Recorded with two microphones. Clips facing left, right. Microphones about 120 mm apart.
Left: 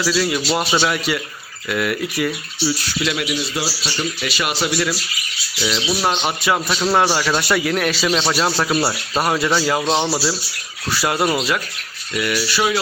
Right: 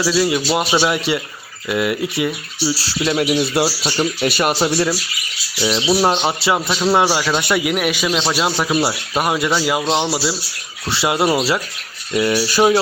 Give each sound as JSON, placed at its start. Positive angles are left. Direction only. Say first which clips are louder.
{"t": 0.0, "sound": "speech", "louder": "right 3 dB", "side_deg": -20}
{"t": 2.7, "sound": "speech", "louder": "right 4 dB", "side_deg": -30}
{"t": 3.2, "sound": "a man's voice", "louder": "right 7 dB", "side_deg": -55}
{"t": 10.8, "sound": "speech", "louder": "right 2 dB", "side_deg": -25}
{"t": 12.5, "sound": "speech", "louder": "right 7 dB", "side_deg": -45}